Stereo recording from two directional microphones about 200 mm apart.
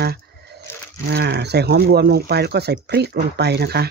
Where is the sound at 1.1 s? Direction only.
55° right (ahead or behind).